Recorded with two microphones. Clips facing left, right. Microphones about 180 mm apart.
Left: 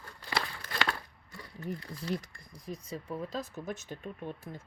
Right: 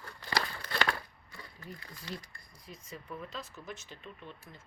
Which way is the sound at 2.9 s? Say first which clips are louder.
Left 5 dB; 30° left (ahead or behind).